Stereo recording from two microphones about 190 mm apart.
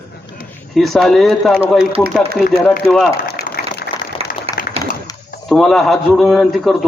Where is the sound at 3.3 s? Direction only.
50° left (ahead or behind).